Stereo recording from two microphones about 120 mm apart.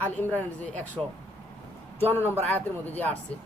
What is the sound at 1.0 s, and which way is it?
Speech, 15° right (ahead or behind).